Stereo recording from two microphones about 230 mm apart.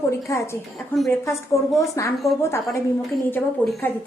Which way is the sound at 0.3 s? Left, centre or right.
Centre.